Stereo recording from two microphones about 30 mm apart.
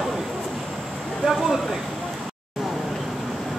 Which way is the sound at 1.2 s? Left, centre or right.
Centre.